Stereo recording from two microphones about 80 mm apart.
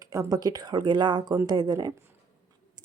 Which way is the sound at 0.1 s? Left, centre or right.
Right.